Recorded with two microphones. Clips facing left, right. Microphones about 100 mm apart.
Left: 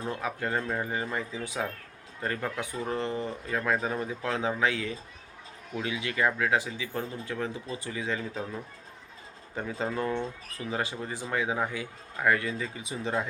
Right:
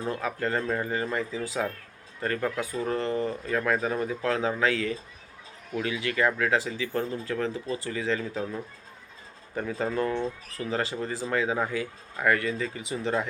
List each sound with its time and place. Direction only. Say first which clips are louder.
0.2 s speech: right 2 dB; 15° left (ahead or behind)
9.6 s speech: right 3 dB; 15° left (ahead or behind)